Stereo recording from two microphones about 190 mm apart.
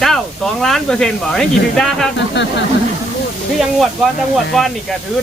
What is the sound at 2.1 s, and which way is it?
Speech, 70° left (ahead or behind).